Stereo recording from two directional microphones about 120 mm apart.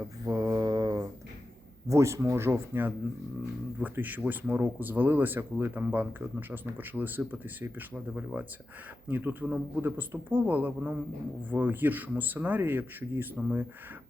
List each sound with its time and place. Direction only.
0.3 s mantra: 30° right (ahead or behind)
1.9 s speech: 25° right (ahead or behind)